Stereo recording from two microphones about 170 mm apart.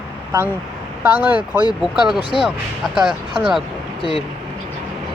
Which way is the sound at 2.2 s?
30° right (ahead or behind).